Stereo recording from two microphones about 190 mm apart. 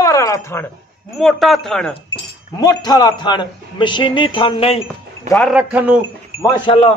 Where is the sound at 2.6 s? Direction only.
20° left (ahead or behind).